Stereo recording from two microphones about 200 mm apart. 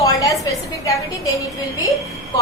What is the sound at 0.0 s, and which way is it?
A woman's voice, 15° left (ahead or behind).